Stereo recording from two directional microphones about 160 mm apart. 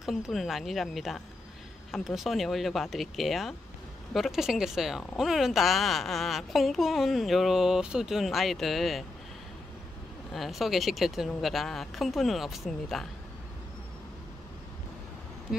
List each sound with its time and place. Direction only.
0.0 s speech: centre (ahead or behind)
10.3 s speech: centre (ahead or behind)